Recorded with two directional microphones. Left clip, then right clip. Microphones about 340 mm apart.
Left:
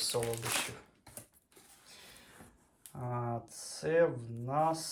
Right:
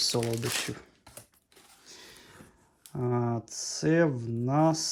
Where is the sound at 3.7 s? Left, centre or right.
Right.